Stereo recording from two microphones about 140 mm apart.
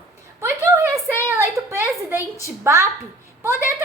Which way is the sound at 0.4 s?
15° right (ahead or behind).